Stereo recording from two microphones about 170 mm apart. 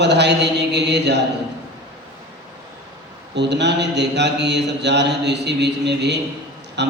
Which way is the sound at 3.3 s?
90° right.